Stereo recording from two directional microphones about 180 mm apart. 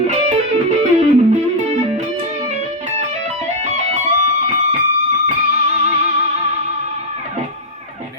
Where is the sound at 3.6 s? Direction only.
40° right (ahead or behind).